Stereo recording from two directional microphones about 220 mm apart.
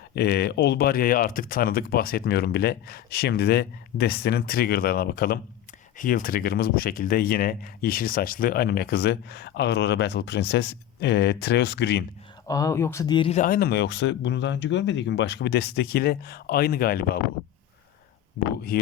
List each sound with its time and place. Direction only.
0.2 s speech: 45° left (ahead or behind)
12.5 s speech: 15° left (ahead or behind)
13.4 s speech: 40° left (ahead or behind)
18.4 s speech: 45° left (ahead or behind)